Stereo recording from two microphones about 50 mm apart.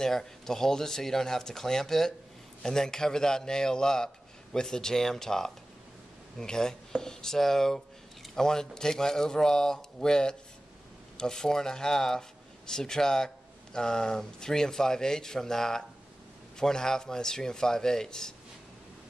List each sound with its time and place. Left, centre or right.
0.0 s speech: centre